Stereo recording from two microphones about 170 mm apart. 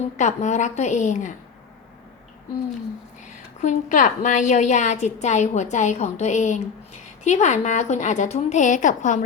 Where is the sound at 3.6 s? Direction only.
45° left (ahead or behind).